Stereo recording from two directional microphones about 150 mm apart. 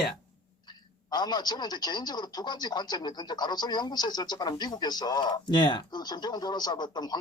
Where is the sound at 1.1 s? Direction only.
30° left (ahead or behind).